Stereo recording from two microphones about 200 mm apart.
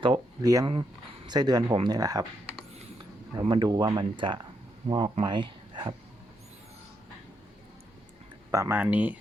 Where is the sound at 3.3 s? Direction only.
20° right (ahead or behind).